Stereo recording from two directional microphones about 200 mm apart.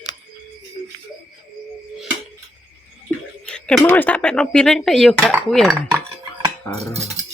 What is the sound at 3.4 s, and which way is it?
Speech, 5° left (ahead or behind).